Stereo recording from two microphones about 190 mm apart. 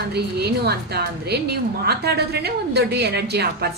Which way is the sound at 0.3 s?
60° right (ahead or behind).